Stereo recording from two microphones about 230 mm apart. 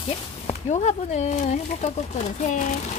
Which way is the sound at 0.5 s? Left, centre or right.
Left.